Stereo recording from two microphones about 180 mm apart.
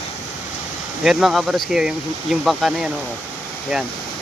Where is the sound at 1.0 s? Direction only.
Centre (ahead or behind).